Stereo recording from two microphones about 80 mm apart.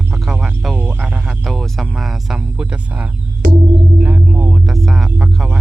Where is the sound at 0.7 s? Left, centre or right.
Right.